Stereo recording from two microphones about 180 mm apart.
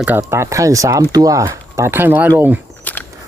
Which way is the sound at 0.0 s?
10° right (ahead or behind).